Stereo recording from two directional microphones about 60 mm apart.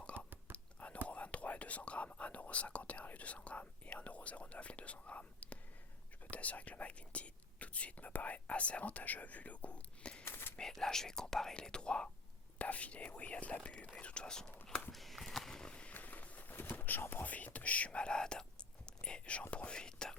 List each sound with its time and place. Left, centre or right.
0.0 s whispering: centre
1.0 s speech: left
10.2 s a sound: left
10.6 s speech: centre
14.9 s a sound: centre
16.0 s speech: left